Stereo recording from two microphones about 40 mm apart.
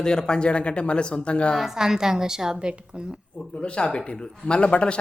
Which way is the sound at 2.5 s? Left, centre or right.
Right.